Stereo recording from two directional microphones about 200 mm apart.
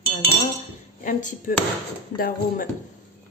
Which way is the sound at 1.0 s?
40° left (ahead or behind).